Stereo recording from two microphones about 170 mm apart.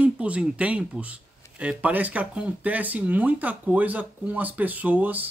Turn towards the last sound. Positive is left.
turn(degrees=-10)  # may be behind; listen again after turning